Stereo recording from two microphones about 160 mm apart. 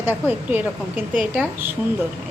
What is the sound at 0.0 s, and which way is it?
A woman's voice, 10° right (ahead or behind).